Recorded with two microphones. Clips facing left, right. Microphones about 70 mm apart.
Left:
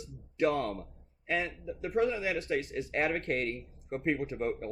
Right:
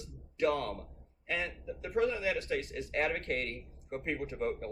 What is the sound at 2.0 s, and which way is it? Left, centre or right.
A man's voice, left.